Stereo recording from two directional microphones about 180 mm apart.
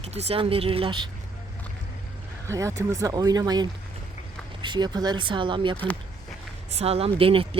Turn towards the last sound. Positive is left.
turn(degrees=-30)  # may be behind; listen again after turning